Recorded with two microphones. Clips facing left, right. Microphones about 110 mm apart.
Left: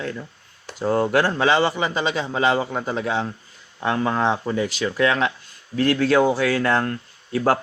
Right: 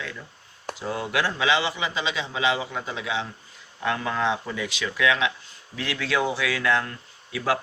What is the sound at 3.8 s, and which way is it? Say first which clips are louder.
Speech: left 4 dB; 35° left (ahead or behind).